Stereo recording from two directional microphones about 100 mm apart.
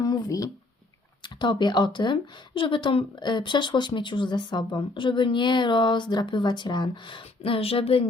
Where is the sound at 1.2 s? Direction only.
50° left (ahead or behind).